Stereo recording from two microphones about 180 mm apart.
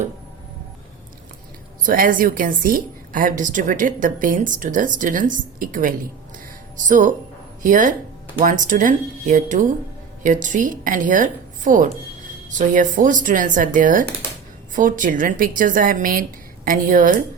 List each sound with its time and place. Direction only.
1.8 s a woman's voice: 50° right (ahead or behind)